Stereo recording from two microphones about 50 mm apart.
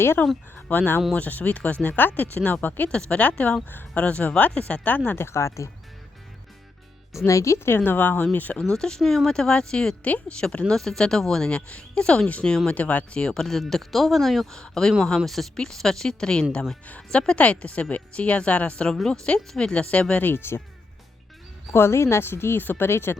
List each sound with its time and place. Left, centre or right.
0.2 s a woman's voice: left
5.1 s speech: left
7.3 s speech: left
7.9 s speech: left
8.7 s speech: centre
10.0 s a woman's voice: left
13.1 s speech: centre
14.5 s a woman's voice: centre
20.2 s speech: left
21.7 s speech: left
22.6 s speech: left
22.9 s speech: left